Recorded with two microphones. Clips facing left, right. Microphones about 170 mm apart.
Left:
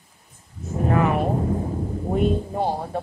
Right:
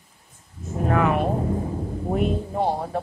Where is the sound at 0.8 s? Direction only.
Centre (ahead or behind).